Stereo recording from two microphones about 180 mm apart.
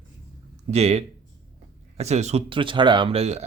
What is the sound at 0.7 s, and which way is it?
Speech, 35° right (ahead or behind).